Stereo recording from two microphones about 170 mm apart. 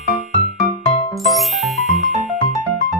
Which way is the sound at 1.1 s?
Centre (ahead or behind).